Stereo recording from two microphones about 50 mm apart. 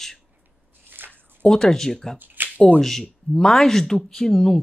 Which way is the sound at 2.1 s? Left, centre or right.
Right.